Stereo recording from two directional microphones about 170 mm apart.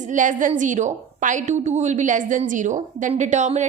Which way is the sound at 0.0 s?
50° right (ahead or behind).